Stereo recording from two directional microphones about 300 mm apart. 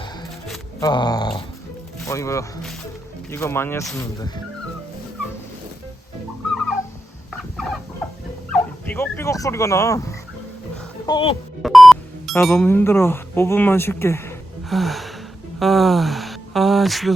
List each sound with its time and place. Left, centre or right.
0.8 s speech: centre
7.5 s fowl: centre
8.5 s speech: centre
11.6 s speech: centre